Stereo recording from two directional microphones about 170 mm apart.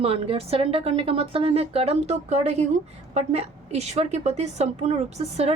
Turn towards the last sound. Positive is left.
turn(degrees=-35)  # may be behind; listen again after turning